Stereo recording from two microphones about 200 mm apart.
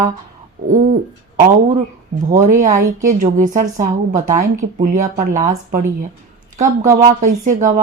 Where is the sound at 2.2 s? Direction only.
40° right (ahead or behind).